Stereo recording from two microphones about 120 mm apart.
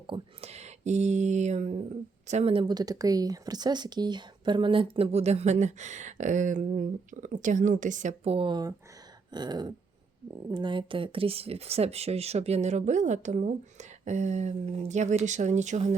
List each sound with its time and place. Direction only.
0.1 s speech: 40° right (ahead or behind)
0.4 s a woman's voice: 65° right (ahead or behind)
2.5 s speech: 45° right (ahead or behind)
2.7 s speech: 30° right (ahead or behind)
9.3 s throat clearing: 35° right (ahead or behind)
10.5 s speech: 40° right (ahead or behind); by 16.0 s 75° right (ahead or behind)